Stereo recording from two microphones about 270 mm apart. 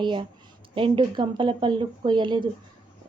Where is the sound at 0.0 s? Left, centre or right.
Centre.